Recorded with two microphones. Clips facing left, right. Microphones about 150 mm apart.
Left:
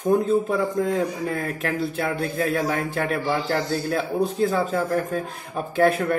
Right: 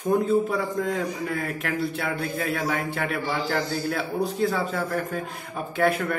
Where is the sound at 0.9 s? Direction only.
40° left (ahead or behind).